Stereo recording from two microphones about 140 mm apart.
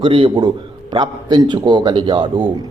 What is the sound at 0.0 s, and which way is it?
A man's voice, 35° right (ahead or behind).